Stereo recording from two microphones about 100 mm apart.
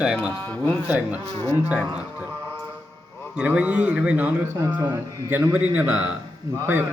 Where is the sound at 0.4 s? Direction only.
15° left (ahead or behind).